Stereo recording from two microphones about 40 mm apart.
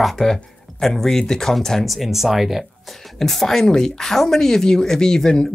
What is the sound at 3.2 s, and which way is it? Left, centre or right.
Speech, centre.